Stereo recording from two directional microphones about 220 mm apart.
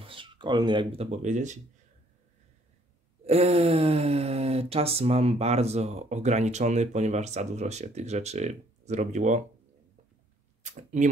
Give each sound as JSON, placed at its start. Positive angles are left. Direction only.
{"t": 0.0, "sound": "speech", "side_deg": -25}
{"t": 1.1, "sound": "speech", "side_deg": -35}
{"t": 3.3, "sound": "speech", "side_deg": -30}
{"t": 10.6, "sound": "speech", "side_deg": -35}